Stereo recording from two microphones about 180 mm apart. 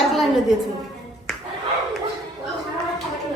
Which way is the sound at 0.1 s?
Centre (ahead or behind).